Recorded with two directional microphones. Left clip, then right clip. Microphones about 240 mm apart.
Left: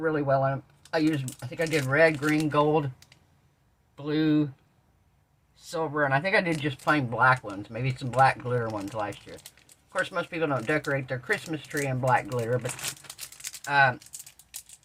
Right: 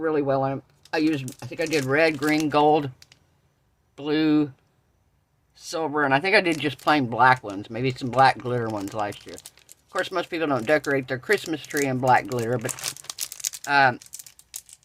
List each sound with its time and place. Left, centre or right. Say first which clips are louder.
0.0 s speech: right 2 dB; right
2.5 s speech: right 7 dB; right
5.8 s speech: right 4 dB; right
13.1 s crumpling: right 8 dB; right